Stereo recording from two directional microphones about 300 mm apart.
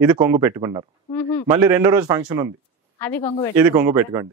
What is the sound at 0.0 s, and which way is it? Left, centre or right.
Speech, centre.